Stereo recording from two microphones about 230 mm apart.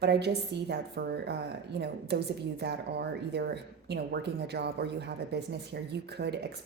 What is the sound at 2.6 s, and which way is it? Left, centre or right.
Speech, right.